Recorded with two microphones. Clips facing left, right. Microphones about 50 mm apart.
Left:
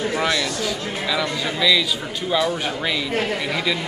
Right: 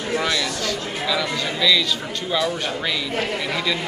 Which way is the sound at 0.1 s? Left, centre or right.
Centre.